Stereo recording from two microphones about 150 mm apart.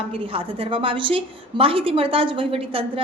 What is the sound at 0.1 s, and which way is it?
A woman's voice, 35° right (ahead or behind).